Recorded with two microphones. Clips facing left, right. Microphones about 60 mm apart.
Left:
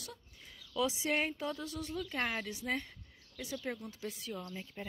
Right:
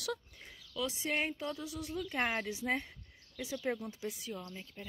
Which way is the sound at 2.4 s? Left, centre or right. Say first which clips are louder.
Right 2 dB; right.